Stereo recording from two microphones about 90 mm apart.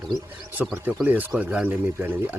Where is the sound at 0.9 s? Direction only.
20° right (ahead or behind).